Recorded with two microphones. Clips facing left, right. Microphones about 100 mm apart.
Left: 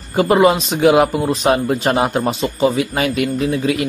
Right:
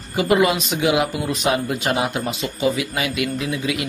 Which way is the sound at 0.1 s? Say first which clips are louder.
Left 5 dB; 35° left (ahead or behind).